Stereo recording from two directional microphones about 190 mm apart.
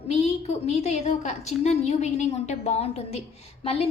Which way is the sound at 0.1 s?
35° left (ahead or behind).